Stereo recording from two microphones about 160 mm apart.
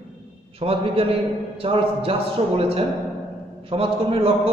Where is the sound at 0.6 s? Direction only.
35° right (ahead or behind).